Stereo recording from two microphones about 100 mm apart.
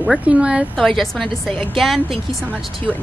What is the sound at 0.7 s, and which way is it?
Speech, centre (ahead or behind).